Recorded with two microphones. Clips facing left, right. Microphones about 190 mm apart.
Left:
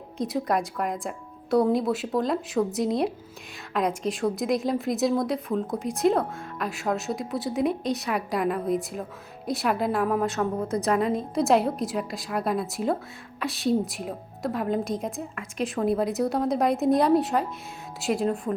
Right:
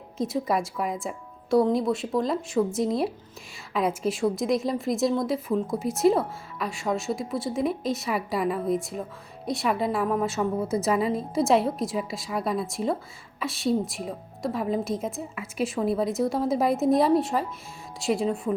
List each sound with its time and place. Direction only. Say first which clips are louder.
0.2 s a woman's voice: even; centre (ahead or behind)